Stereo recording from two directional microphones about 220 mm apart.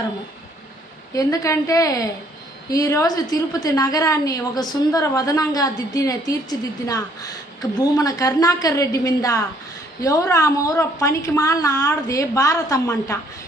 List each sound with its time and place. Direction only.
1.1 s a woman's voice: 15° left (ahead or behind)